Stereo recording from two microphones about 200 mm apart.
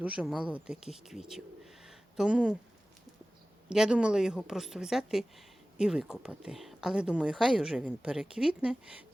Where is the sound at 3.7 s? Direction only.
5° right (ahead or behind).